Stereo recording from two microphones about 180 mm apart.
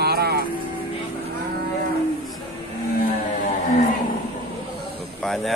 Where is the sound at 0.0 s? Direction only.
65° right (ahead or behind).